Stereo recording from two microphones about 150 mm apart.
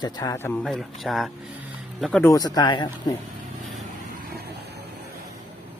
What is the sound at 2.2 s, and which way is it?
Speech, 25° left (ahead or behind).